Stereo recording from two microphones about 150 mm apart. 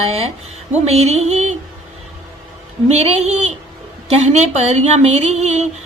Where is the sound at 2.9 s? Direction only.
45° right (ahead or behind).